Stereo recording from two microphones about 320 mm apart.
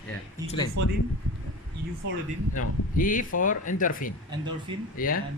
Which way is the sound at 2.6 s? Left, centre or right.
Left.